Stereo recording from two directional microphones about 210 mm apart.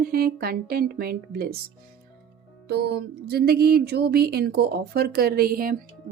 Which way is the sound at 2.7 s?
50° right (ahead or behind).